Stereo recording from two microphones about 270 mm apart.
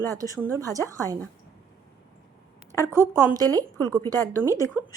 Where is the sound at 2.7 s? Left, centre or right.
Centre.